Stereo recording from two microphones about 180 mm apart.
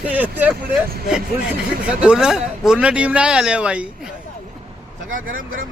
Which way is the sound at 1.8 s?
5° right (ahead or behind).